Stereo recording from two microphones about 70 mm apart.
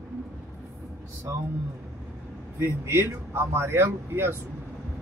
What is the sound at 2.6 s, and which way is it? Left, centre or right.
Speech, right.